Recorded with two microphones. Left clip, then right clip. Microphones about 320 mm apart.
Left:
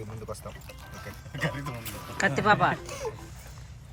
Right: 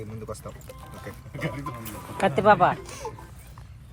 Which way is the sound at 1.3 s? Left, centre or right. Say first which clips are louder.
Left 1 dB; left.